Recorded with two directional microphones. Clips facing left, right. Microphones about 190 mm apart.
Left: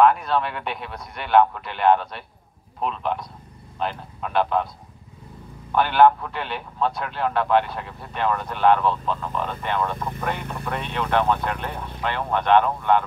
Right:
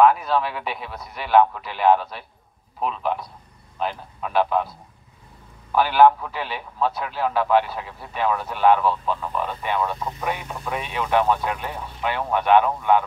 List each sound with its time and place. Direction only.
0.0 s a man's voice: centre (ahead or behind)
5.7 s a man's voice: 5° right (ahead or behind)